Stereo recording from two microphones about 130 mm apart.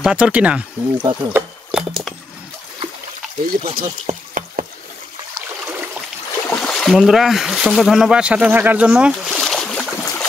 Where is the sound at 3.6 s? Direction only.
55° right (ahead or behind).